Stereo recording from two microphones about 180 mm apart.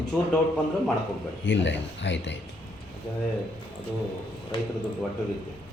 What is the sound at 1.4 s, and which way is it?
Speech, 85° left.